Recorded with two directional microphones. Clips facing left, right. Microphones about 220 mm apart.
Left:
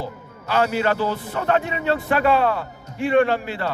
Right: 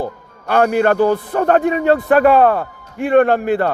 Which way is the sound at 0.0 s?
55° right (ahead or behind).